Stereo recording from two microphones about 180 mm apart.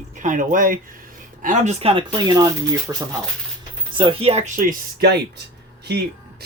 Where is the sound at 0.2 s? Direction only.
45° right (ahead or behind); by 2.9 s 20° right (ahead or behind).